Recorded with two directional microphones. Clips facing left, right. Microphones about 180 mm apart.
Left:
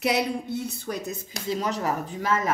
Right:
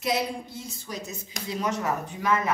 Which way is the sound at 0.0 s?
65° left (ahead or behind).